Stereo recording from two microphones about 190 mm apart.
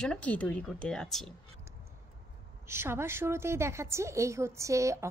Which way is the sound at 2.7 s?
15° right (ahead or behind).